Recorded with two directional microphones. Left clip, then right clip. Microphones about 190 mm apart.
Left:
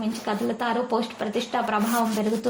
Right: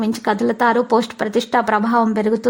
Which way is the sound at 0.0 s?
45° right (ahead or behind).